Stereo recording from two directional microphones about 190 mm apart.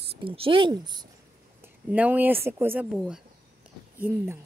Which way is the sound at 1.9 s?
10° right (ahead or behind).